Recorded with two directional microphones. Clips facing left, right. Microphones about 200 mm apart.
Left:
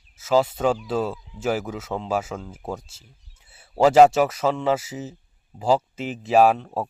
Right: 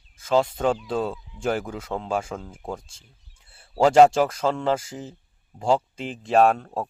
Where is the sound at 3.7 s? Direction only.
5° left (ahead or behind).